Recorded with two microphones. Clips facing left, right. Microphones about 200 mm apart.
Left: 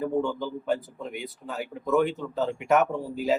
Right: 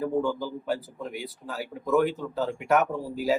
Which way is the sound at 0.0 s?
5° right (ahead or behind).